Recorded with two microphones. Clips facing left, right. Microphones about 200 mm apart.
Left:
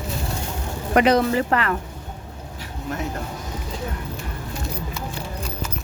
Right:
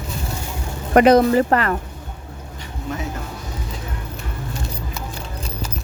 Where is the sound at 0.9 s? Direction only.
45° right (ahead or behind).